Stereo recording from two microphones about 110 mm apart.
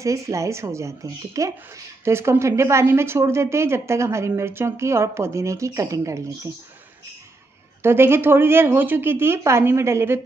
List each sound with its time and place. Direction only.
0.0 s speech: 30° right (ahead or behind)
7.8 s speech: 20° right (ahead or behind)